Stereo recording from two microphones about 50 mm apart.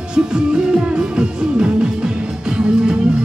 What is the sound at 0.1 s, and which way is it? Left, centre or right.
Music, centre.